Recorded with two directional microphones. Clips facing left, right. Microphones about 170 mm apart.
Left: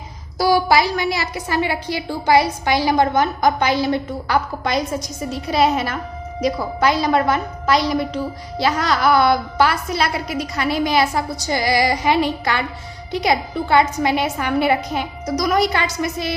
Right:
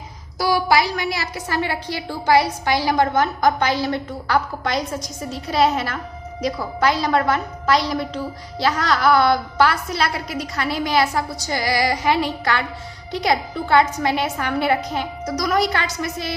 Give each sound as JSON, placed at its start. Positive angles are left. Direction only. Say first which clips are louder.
{"t": 0.3, "sound": "a woman's voice", "louder": "left 3 dB", "side_deg": 30}